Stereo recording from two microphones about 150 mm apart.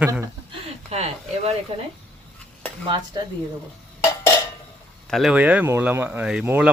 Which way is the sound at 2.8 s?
30° right (ahead or behind).